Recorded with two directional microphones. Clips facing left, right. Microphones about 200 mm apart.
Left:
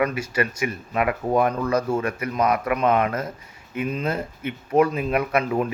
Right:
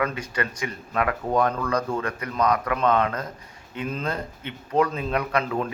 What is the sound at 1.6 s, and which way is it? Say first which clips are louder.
Speech: left 3 dB; 25° left (ahead or behind).